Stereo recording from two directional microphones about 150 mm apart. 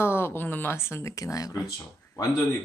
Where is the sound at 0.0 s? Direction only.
15° left (ahead or behind).